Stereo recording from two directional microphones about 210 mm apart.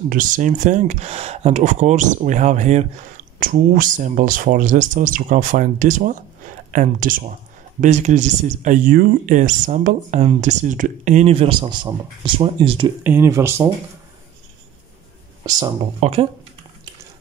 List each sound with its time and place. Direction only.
0.1 s speech: 40° right (ahead or behind); by 12.9 s 20° right (ahead or behind)
13.0 s speech: 10° right (ahead or behind)
16.0 s speech: 30° right (ahead or behind)